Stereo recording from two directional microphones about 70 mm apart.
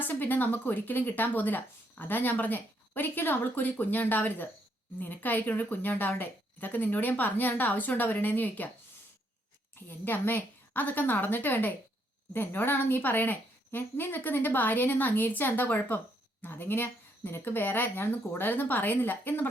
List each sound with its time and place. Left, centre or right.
0.0 s speech: left
9.7 s speech: left